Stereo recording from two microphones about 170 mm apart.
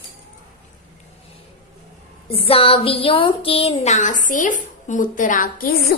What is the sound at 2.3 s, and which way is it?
A woman's voice, 35° left (ahead or behind).